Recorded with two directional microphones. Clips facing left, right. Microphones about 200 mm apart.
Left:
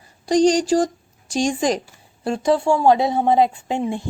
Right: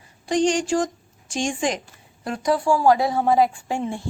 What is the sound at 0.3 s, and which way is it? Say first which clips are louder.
A woman's voice: left 5 dB; 35° left (ahead or behind).